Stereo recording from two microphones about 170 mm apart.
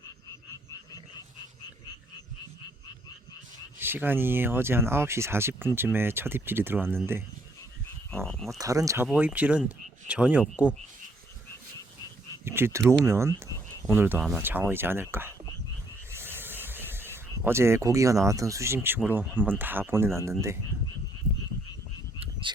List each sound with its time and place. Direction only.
3.8 s speech: 10° right (ahead or behind)
8.1 s frog: 5° left (ahead or behind)
8.4 s speech: 20° right (ahead or behind)
12.5 s speech: 15° right (ahead or behind)
16.1 s snake: 15° right (ahead or behind)
19.0 s speech: 10° right (ahead or behind)
22.2 s frog: 30° right (ahead or behind)